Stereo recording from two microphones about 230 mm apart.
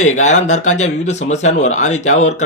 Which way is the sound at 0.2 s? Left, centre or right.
Left.